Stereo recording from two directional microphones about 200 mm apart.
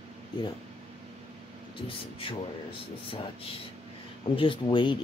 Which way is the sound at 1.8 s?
25° left (ahead or behind).